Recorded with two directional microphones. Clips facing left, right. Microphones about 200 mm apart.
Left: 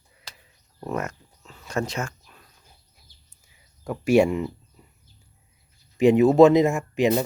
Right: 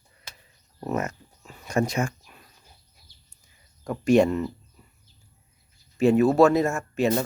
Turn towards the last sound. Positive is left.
turn(degrees=15)  # may be behind; listen again after turning